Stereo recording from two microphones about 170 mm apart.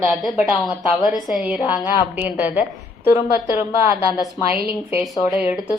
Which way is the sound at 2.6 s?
15° right (ahead or behind).